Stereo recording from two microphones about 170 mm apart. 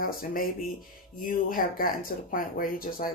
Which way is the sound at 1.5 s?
55° left (ahead or behind).